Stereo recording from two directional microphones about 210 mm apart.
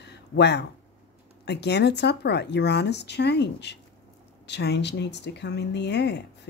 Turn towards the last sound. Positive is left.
turn(degrees=55)  # may be behind; listen again after turning